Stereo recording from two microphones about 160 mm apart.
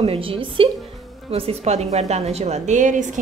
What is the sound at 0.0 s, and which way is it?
A woman's voice, 35° right (ahead or behind).